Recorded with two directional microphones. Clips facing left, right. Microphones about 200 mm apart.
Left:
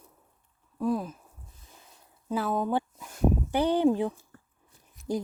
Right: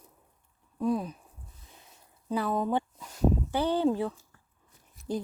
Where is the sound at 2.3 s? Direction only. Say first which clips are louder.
Left 1 dB; 5° left (ahead or behind).